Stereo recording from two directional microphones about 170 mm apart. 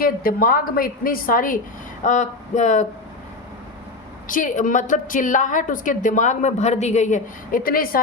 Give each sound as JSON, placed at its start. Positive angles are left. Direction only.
{"t": 0.0, "sound": "a woman's voice", "side_deg": 60}
{"t": 4.3, "sound": "a woman's voice", "side_deg": 50}